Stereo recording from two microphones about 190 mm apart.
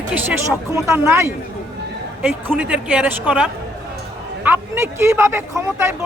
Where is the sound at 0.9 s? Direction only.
15° right (ahead or behind).